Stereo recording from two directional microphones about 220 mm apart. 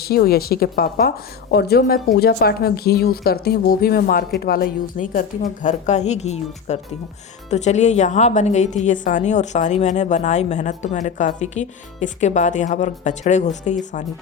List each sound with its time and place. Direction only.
0.0 s a woman's voice: 45° left (ahead or behind)